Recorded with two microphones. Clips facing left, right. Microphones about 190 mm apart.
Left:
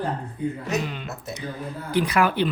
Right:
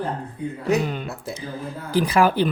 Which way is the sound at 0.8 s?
45° right (ahead or behind).